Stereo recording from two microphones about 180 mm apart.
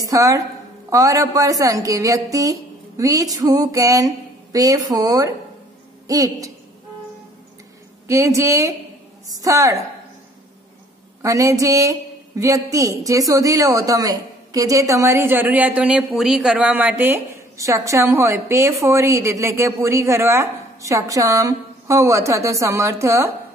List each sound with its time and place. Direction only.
0.0 s a sound: 20° right (ahead or behind)
8.1 s a woman's voice: 15° right (ahead or behind)
11.2 s a woman's voice: 20° right (ahead or behind)